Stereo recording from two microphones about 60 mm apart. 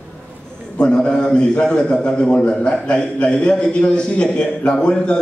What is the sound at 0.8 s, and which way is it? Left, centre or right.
A man's voice, centre.